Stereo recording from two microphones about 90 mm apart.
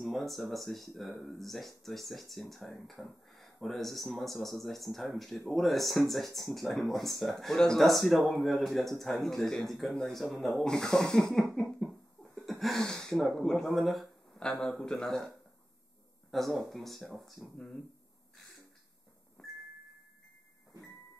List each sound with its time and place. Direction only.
0.0 s speech: centre (ahead or behind)
11.8 s a sound: 5° left (ahead or behind)
14.5 s speech: 5° left (ahead or behind)
17.6 s speech: 10° left (ahead or behind)